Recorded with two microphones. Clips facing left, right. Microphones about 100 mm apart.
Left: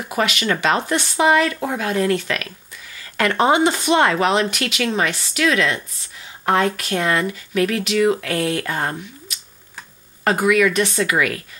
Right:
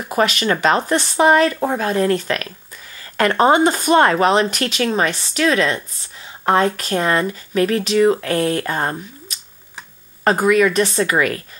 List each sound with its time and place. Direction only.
0.1 s speech: 40° right (ahead or behind)